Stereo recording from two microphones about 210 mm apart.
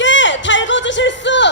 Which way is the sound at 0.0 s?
60° left (ahead or behind).